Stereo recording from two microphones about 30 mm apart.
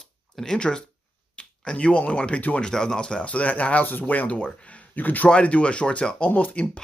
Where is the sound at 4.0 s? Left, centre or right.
Left.